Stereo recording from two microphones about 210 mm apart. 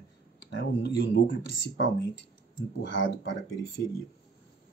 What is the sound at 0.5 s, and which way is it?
Speech, 55° left (ahead or behind).